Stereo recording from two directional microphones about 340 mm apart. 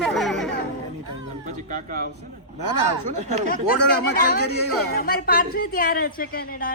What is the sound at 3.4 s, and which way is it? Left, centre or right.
Speech, left.